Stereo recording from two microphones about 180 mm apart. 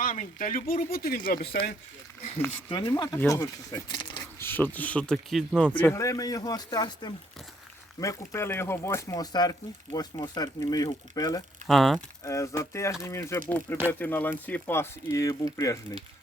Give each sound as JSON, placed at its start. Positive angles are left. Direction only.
{"t": 0.0, "sound": "speech", "side_deg": 45}
{"t": 2.6, "sound": "speech", "side_deg": 25}
{"t": 5.7, "sound": "speech", "side_deg": 10}
{"t": 11.7, "sound": "speech", "side_deg": 0}
{"t": 12.2, "sound": "speech", "side_deg": 15}